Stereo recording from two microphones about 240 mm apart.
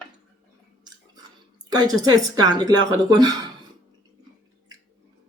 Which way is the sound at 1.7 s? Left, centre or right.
Centre.